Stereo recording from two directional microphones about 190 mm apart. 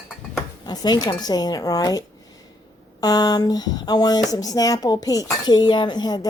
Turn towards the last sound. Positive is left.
turn(degrees=20)  # may be behind; listen again after turning